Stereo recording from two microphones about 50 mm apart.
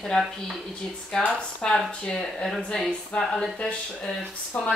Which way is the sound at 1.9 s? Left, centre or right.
Centre.